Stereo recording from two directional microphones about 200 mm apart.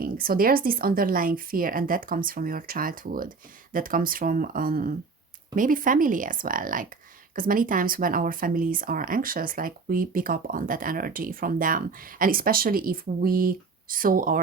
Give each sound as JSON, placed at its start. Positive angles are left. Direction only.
{"t": 0.0, "sound": "speech", "side_deg": -45}